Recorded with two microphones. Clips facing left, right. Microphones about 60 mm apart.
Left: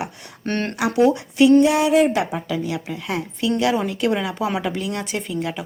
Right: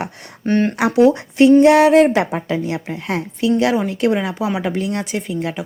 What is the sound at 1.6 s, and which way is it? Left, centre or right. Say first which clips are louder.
A woman's voice: right 6 dB; right.